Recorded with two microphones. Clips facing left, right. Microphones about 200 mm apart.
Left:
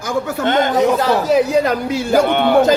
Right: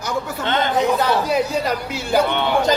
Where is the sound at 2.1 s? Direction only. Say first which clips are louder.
Left 5 dB; 50° left (ahead or behind).